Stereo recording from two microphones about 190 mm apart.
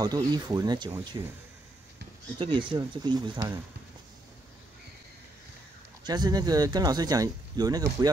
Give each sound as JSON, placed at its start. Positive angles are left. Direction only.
{"t": 0.0, "sound": "speech", "side_deg": -20}
{"t": 2.3, "sound": "speech", "side_deg": -25}
{"t": 6.0, "sound": "speech", "side_deg": -20}